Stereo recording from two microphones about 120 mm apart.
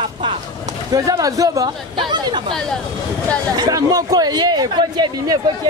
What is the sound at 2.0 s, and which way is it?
Speech, 40° right (ahead or behind).